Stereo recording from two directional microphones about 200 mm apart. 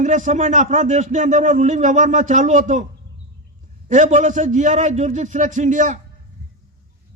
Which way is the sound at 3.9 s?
35° right (ahead or behind).